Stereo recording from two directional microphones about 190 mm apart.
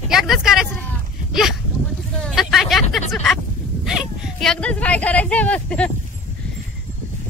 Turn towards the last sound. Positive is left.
turn(degrees=5)  # may be behind; listen again after turning